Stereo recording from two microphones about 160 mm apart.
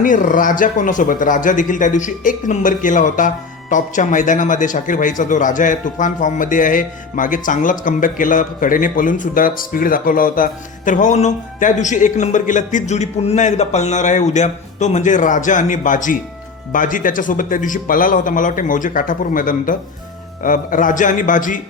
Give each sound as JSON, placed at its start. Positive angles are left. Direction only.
{"t": 0.0, "sound": "speech", "side_deg": 55}